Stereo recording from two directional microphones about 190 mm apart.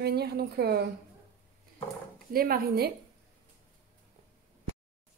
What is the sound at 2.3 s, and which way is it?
Speech, 50° right (ahead or behind).